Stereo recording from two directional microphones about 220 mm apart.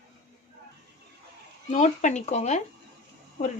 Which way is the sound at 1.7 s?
30° left (ahead or behind).